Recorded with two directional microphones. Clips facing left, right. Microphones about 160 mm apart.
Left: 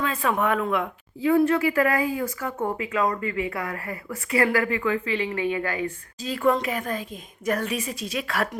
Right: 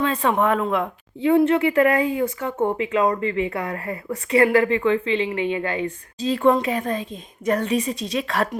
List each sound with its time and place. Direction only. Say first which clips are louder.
0.0 s speech: right 4 dB; 30° right (ahead or behind)